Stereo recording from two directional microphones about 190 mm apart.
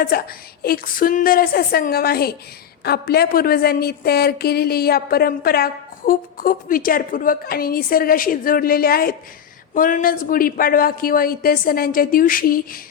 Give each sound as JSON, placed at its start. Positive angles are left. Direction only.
{"t": 0.0, "sound": "a woman's voice", "side_deg": 50}